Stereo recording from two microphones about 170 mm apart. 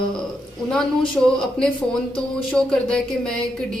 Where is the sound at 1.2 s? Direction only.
Centre (ahead or behind).